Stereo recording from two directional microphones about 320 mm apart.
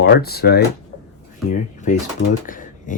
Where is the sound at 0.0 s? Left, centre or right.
Left.